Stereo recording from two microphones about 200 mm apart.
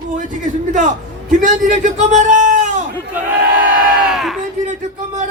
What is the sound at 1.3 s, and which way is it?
A man's voice, 40° right (ahead or behind).